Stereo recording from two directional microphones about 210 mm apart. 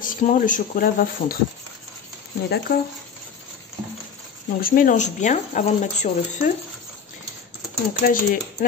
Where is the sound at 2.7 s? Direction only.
50° left (ahead or behind).